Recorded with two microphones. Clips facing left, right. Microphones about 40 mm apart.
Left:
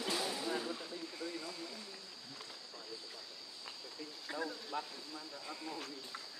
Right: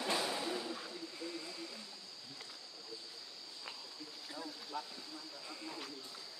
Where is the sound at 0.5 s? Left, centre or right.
Centre.